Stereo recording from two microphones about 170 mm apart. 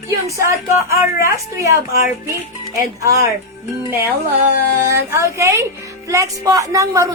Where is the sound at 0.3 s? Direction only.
15° right (ahead or behind).